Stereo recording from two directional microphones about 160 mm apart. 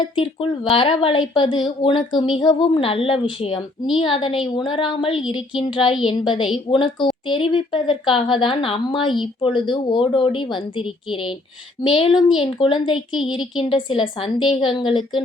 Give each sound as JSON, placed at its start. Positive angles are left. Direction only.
{"t": 0.2, "sound": "a woman's voice", "side_deg": 30}